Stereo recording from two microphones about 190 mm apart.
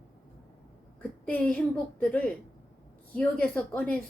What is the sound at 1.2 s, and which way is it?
A woman's voice, 5° left (ahead or behind).